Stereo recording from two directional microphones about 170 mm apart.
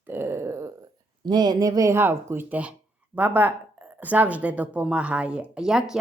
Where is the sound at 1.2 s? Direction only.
25° right (ahead or behind).